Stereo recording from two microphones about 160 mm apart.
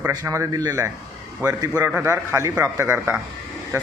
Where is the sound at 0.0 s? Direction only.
20° right (ahead or behind).